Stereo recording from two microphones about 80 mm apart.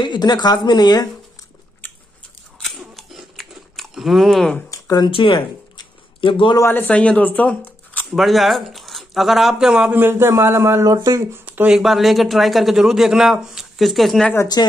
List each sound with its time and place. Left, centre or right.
0.0 s speech: left
2.6 s biting: centre
4.6 s a sound: left
5.0 s speech: left
6.6 s speech: left
8.1 s speech: centre
9.9 s speech: right
11.3 s a sound: right
11.6 s a man's voice: centre
14.6 s speech: left